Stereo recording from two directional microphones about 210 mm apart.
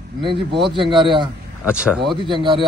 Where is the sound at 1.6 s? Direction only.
5° right (ahead or behind).